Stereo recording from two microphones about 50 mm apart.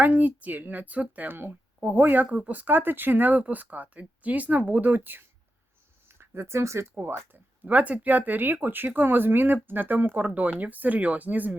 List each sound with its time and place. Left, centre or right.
0.0 s speech: right
6.1 s speech: right
7.6 s speech: right